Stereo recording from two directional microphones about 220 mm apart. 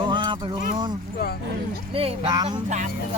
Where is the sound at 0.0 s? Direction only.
20° right (ahead or behind).